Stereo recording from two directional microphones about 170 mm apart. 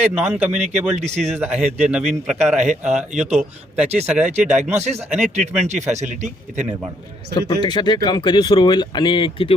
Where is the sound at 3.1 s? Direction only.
45° right (ahead or behind).